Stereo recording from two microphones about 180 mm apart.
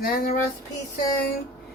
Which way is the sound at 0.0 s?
55° left (ahead or behind).